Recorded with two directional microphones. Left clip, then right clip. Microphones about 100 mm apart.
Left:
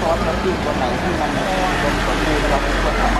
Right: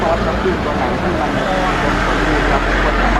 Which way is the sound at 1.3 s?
15° right (ahead or behind).